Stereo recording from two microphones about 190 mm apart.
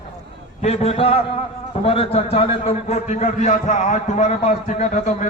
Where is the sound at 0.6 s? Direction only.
35° left (ahead or behind).